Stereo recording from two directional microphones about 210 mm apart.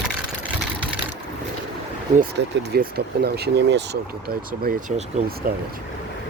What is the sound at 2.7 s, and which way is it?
Speech, 50° right (ahead or behind).